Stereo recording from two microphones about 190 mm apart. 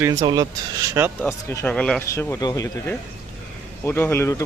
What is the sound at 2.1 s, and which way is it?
Speech, 15° left (ahead or behind).